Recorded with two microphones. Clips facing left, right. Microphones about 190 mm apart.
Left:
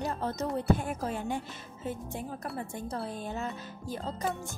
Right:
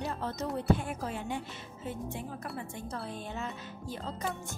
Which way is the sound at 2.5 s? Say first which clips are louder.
Left 3 dB; 35° left (ahead or behind).